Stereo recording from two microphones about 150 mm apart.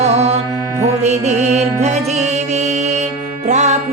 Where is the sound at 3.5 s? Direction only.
50° right (ahead or behind).